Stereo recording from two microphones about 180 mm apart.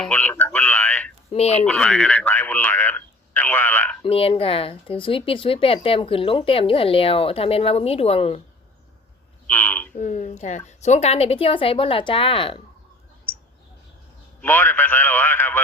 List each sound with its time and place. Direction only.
0.0 s a sound: 10° left (ahead or behind)
1.3 s speech: 35° left (ahead or behind)
1.6 s a man's voice: 5° left (ahead or behind)
4.0 s speech: 30° left (ahead or behind)
9.5 s a man's voice: 10° left (ahead or behind)
9.9 s speech: 45° left (ahead or behind)
14.4 s a man's voice: 10° left (ahead or behind)